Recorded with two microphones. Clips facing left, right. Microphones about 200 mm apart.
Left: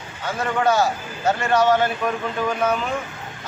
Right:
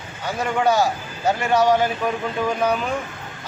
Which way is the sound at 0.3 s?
15° right (ahead or behind).